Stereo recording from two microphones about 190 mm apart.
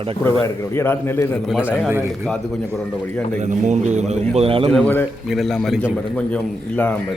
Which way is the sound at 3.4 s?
40° right (ahead or behind).